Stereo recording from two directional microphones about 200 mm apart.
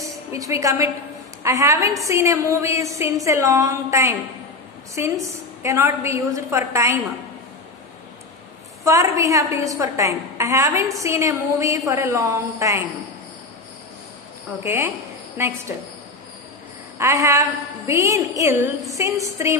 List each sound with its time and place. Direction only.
0.3 s a woman's voice: 15° right (ahead or behind)
8.8 s a woman's voice: 15° right (ahead or behind)
14.6 s a woman's voice: 15° right (ahead or behind)
17.0 s a woman's voice: 15° right (ahead or behind)